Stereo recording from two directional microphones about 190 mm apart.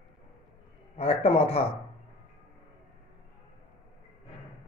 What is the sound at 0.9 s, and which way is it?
Speech, 30° left (ahead or behind).